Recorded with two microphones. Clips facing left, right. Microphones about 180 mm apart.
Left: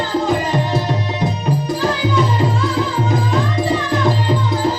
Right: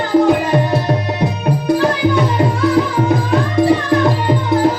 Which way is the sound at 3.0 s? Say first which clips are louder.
Right 3 dB; 60° right (ahead or behind).